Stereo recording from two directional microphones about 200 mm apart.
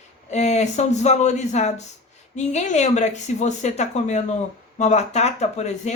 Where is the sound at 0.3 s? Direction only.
35° left (ahead or behind).